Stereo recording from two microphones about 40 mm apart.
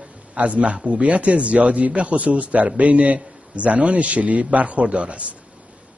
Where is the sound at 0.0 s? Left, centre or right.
Right.